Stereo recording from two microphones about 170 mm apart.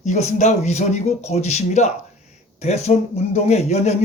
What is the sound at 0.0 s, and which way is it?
Speech, 45° left (ahead or behind).